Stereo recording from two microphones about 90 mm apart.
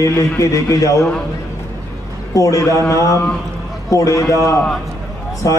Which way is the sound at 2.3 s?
35° left (ahead or behind).